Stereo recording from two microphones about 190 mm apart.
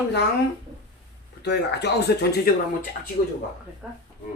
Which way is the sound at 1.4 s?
60° left (ahead or behind).